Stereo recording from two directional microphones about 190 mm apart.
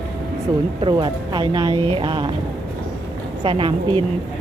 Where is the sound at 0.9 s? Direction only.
25° right (ahead or behind).